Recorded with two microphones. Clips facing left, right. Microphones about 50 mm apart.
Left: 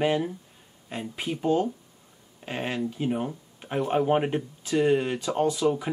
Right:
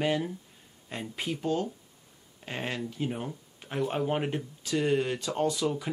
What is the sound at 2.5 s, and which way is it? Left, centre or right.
Speech, centre.